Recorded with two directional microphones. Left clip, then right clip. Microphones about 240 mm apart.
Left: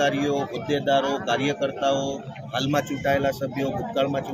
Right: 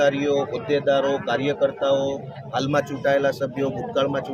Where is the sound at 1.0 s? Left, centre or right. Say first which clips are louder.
Right 3 dB; right.